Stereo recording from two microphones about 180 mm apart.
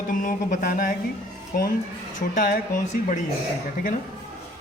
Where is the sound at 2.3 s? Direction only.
50° left (ahead or behind).